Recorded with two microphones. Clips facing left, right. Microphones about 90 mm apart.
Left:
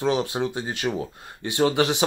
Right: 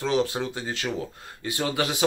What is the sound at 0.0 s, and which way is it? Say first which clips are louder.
Speech: left 1 dB; 20° left (ahead or behind).